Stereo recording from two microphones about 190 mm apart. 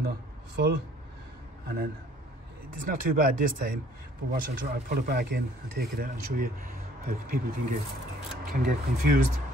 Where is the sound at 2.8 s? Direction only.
45° right (ahead or behind).